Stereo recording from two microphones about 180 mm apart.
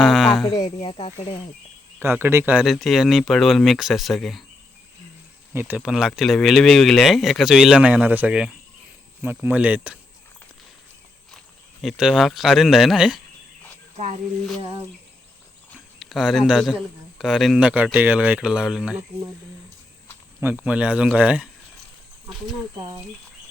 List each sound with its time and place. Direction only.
0.0 s a sound: centre (ahead or behind)
0.4 s speech: 20° left (ahead or behind)
2.0 s speech: 10° right (ahead or behind)
5.5 s speech: 10° right (ahead or behind)
11.8 s speech: centre (ahead or behind)
16.0 s speech: centre (ahead or behind)
20.4 s speech: 10° right (ahead or behind)